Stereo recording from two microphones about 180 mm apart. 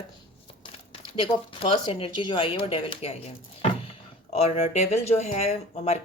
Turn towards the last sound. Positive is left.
turn(degrees=40)  # may be behind; listen again after turning